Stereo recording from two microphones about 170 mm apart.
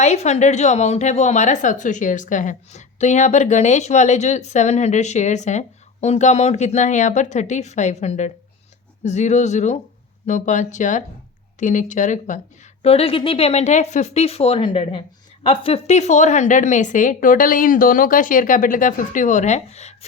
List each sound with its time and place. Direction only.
0.0 s a woman's voice: 40° left (ahead or behind)
12.8 s a woman's voice: 35° left (ahead or behind)